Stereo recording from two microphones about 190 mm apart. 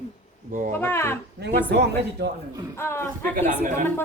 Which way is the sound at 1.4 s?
60° right (ahead or behind).